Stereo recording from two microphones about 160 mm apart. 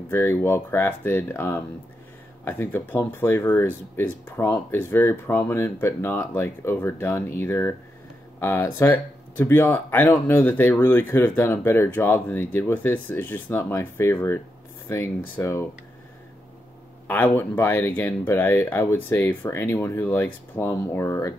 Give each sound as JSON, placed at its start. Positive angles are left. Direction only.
{"t": 0.1, "sound": "speech", "side_deg": 15}
{"t": 17.1, "sound": "speech", "side_deg": 10}